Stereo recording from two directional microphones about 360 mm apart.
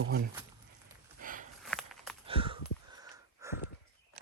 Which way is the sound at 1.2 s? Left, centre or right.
Right.